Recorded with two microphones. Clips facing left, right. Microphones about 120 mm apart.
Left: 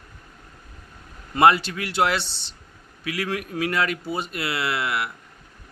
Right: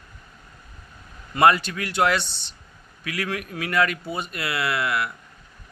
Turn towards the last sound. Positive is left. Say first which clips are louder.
# right 1 dB
turn(degrees=25)  # may be behind; listen again after turning